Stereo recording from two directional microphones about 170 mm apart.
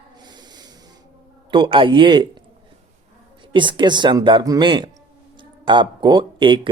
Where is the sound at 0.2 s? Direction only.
25° right (ahead or behind).